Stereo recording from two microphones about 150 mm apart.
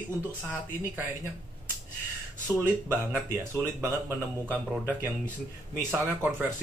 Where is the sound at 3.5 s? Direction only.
15° right (ahead or behind).